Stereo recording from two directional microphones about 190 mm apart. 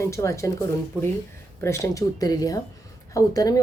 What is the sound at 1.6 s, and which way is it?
Speech, 15° left (ahead or behind).